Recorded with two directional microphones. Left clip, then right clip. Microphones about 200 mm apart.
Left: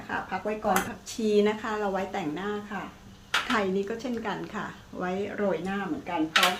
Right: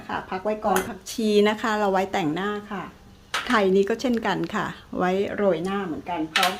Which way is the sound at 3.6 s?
55° right (ahead or behind).